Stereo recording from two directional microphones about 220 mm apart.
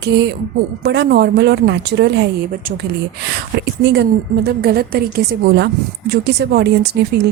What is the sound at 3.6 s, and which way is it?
Speech, 50° right (ahead or behind).